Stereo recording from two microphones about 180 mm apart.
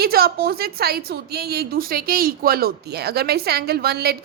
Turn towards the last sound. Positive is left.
turn(degrees=-60)  # may be behind; listen again after turning